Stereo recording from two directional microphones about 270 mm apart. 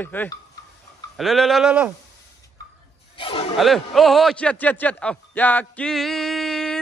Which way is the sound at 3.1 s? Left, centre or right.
Centre.